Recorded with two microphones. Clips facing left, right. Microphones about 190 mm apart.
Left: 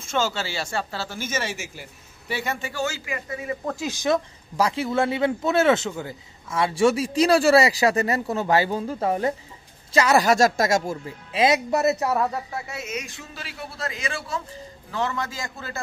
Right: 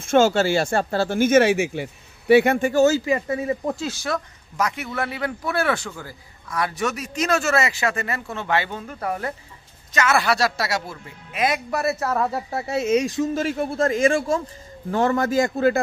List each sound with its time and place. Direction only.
0.0 s speech: 55° right (ahead or behind); by 3.5 s 30° right (ahead or behind)
3.8 s speech: 20° left (ahead or behind)
4.6 s a man's voice: 30° left (ahead or behind)
9.9 s speech: 35° left (ahead or behind)
11.3 s a man's voice: 25° left (ahead or behind)
12.4 s speech: 30° right (ahead or behind); by 15.8 s 60° right (ahead or behind)